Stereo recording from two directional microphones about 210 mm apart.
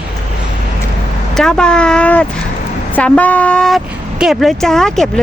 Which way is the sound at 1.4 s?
5° left (ahead or behind).